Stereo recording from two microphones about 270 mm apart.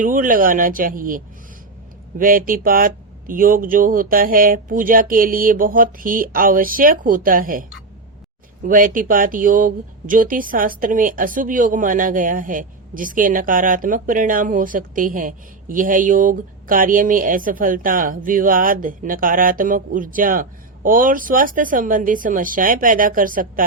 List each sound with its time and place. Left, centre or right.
0.0 s speech: right
8.6 s speech: right